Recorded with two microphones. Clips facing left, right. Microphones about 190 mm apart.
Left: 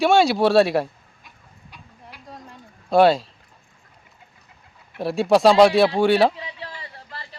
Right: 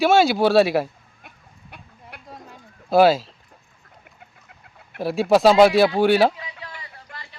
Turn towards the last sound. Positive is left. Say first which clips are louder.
# left 3 dB
turn(degrees=35)  # may be behind; listen again after turning